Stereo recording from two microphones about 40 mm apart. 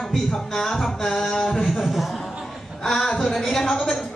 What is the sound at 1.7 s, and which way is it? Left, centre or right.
Speech, centre.